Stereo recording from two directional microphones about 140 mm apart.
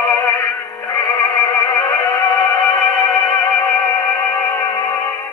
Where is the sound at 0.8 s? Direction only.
25° left (ahead or behind).